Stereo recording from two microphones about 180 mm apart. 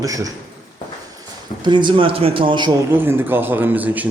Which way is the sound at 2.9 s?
10° right (ahead or behind).